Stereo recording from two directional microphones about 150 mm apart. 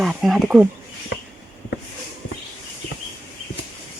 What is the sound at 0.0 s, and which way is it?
Speech, centre (ahead or behind).